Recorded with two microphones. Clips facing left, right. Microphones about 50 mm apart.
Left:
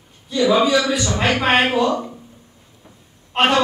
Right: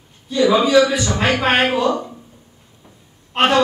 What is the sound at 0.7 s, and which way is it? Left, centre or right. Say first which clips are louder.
Speech: right 4 dB; centre.